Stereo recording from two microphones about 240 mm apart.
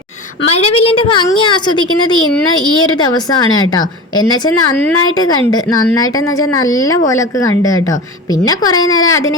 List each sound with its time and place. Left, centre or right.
0.5 s a woman's voice: left
8.9 s a woman's voice: left